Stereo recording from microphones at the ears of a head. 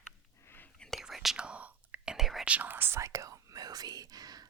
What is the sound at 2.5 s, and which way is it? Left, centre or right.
Whispering, right.